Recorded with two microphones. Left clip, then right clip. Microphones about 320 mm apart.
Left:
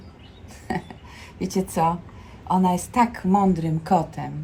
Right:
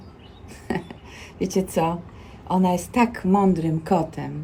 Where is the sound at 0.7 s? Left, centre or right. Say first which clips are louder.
Even; centre.